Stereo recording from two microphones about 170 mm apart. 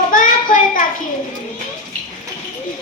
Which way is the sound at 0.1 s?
50° left (ahead or behind).